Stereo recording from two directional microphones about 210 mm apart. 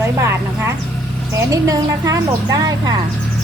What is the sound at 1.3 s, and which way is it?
Speech, 15° right (ahead or behind).